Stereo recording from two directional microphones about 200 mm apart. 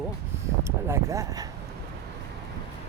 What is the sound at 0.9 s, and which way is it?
Speech, 15° right (ahead or behind).